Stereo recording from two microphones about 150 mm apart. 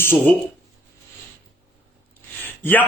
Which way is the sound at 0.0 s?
15° left (ahead or behind).